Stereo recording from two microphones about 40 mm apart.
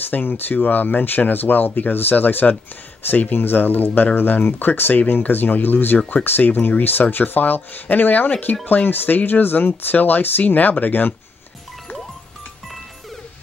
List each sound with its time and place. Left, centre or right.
0.1 s speech: left
3.3 s speech: left
5.9 s speech: left
6.2 s speech: left